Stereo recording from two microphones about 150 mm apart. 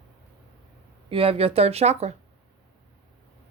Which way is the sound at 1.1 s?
40° right (ahead or behind).